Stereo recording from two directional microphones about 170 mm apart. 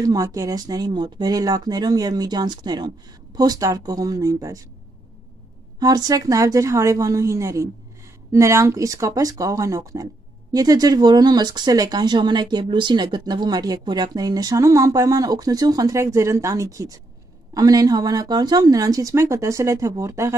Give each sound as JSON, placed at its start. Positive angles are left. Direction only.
{"t": 0.0, "sound": "speech", "side_deg": -20}
{"t": 5.8, "sound": "a woman's voice", "side_deg": -20}